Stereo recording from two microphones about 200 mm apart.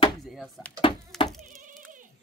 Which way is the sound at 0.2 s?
Centre (ahead or behind).